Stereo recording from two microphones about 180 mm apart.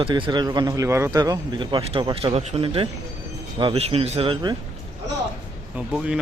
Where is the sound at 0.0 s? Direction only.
25° right (ahead or behind).